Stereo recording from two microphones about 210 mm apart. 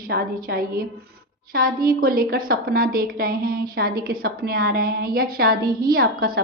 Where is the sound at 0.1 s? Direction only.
45° right (ahead or behind).